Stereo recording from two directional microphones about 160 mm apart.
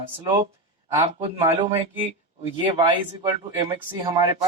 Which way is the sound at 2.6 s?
30° right (ahead or behind).